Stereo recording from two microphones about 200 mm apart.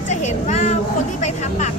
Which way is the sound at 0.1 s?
35° left (ahead or behind).